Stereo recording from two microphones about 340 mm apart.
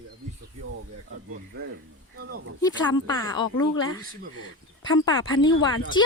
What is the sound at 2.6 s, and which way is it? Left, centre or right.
Speech, centre.